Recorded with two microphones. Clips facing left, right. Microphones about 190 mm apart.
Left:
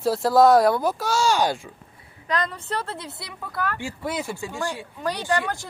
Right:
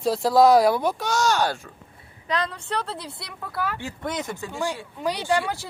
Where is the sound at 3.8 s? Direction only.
10° left (ahead or behind).